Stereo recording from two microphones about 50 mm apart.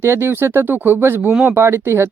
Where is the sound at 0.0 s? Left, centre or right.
Right.